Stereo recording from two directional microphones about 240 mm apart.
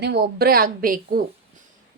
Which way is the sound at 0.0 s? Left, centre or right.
Right.